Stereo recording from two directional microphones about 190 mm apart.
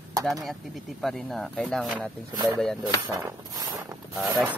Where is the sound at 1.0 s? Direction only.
Centre (ahead or behind).